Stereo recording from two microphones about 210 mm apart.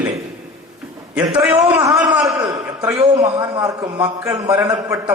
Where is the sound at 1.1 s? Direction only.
5° right (ahead or behind).